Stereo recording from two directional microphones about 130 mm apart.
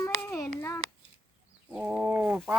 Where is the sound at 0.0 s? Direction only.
20° left (ahead or behind).